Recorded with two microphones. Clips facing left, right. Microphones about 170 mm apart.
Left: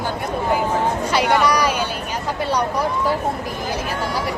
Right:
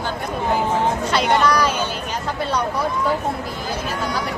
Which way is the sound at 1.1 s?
10° left (ahead or behind).